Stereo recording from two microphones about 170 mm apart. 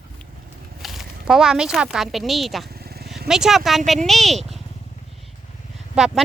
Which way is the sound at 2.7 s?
65° right (ahead or behind).